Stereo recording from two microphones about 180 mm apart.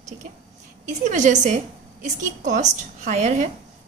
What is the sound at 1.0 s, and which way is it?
A woman's voice, 40° right (ahead or behind).